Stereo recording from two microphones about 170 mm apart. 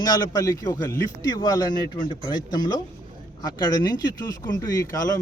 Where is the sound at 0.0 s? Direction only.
20° left (ahead or behind).